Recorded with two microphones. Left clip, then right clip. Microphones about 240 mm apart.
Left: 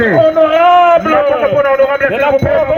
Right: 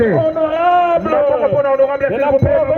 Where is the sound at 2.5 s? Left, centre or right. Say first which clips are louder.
Left 2 dB; centre.